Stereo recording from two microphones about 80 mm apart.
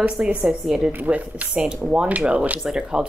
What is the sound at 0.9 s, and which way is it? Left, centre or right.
A woman's voice, centre.